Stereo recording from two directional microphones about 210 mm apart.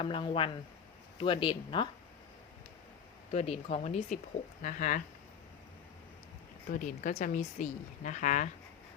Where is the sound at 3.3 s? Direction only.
30° left (ahead or behind).